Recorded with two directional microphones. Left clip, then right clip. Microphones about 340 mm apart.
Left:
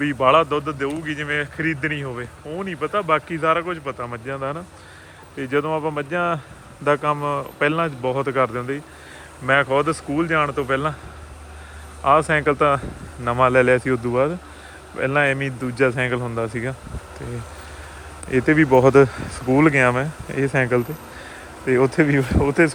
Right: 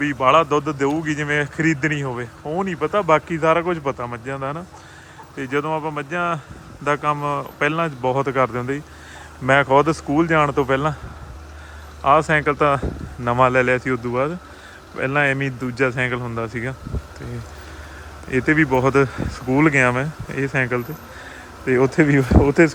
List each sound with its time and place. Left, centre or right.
0.0 s speech: centre
12.0 s speech: centre
18.3 s speech: centre